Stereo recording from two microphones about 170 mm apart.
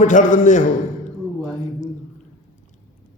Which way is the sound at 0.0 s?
50° left (ahead or behind).